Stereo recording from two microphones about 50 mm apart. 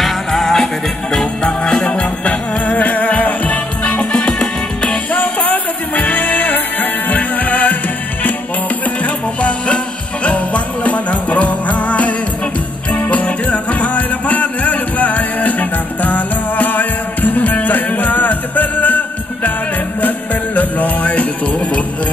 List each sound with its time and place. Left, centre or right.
0.0 s music: centre
1.4 s music: centre
4.1 s music: centre
5.1 s music: left
9.0 s music: left